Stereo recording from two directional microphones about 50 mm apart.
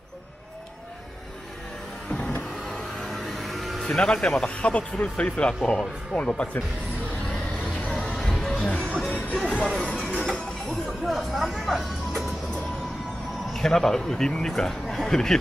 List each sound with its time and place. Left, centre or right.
2.0 s vehicle: centre
2.6 s a sound: centre
3.8 s speech: centre
7.5 s music: left
10.7 s music: centre
13.5 s a man's voice: centre